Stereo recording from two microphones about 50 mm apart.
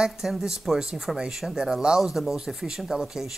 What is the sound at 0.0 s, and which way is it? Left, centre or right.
Speech, centre.